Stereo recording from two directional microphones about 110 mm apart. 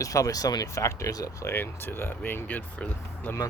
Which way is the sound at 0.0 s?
30° left (ahead or behind).